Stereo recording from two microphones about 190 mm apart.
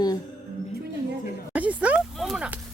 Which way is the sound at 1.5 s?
5° right (ahead or behind).